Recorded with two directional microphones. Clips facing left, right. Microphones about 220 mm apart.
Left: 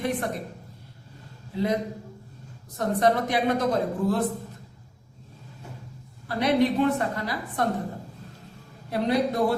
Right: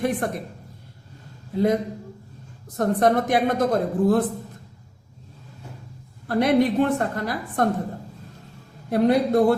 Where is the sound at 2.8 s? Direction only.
50° right (ahead or behind).